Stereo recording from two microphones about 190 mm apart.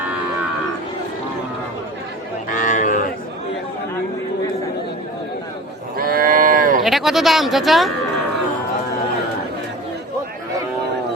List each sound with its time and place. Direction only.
2.5 s a sound: 45° left (ahead or behind)
6.0 s cattle: 50° right (ahead or behind)
6.8 s speech: centre (ahead or behind)